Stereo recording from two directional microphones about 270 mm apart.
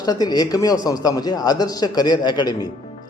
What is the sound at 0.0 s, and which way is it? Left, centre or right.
Speech, centre.